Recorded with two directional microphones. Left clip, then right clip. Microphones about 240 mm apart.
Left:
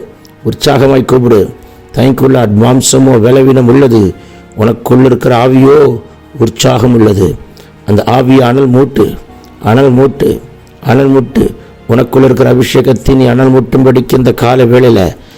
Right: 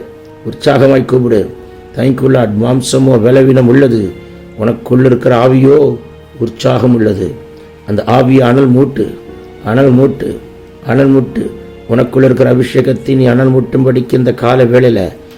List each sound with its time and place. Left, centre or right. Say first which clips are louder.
0.5 s a man's voice: left 1 dB; left